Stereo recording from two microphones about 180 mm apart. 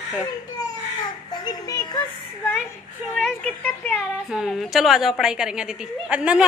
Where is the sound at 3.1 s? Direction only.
Centre (ahead or behind).